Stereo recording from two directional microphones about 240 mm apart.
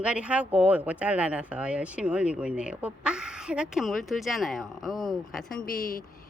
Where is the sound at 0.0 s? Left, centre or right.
Centre.